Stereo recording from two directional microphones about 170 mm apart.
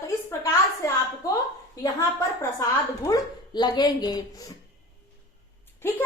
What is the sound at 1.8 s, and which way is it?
A woman's voice, 15° left (ahead or behind).